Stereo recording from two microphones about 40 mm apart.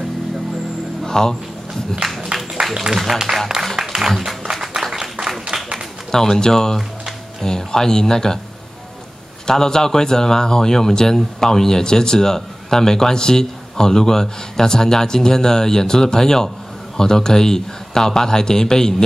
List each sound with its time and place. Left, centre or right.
1.0 s a sound: centre
2.7 s speech: centre
3.7 s music: centre
5.5 s a sound: centre
6.1 s speech: centre
9.5 s speech: centre